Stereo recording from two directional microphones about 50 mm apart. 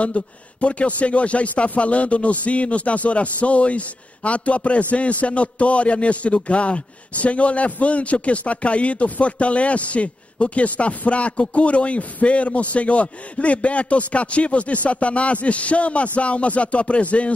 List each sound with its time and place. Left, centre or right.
0.0 s a man's voice: left